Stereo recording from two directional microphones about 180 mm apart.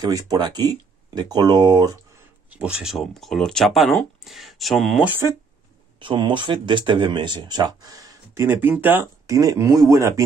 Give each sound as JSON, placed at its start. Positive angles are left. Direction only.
{"t": 0.1, "sound": "speech", "side_deg": -25}
{"t": 2.5, "sound": "speech", "side_deg": -5}
{"t": 5.9, "sound": "speech", "side_deg": -25}